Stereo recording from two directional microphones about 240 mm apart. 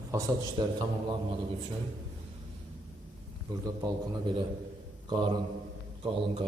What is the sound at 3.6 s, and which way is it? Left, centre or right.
A man's voice, centre.